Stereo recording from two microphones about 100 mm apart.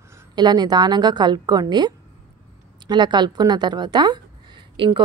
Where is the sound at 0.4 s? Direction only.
45° right (ahead or behind).